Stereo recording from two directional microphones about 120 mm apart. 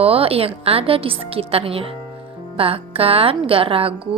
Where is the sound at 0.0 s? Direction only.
55° right (ahead or behind).